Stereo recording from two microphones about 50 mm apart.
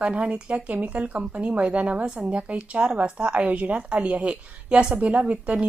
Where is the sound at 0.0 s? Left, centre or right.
Right.